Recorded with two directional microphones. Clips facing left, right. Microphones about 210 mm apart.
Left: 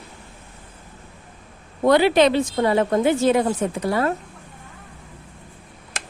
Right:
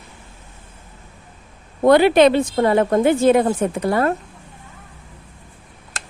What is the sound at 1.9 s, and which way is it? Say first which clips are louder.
A woman's voice: right 4 dB; 50° right (ahead or behind).